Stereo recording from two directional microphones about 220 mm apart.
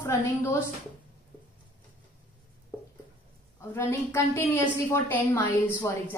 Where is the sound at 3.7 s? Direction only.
10° left (ahead or behind).